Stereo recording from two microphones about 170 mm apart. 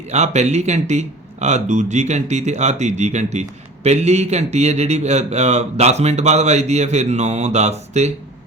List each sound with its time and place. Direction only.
0.1 s a man's voice: 40° right (ahead or behind)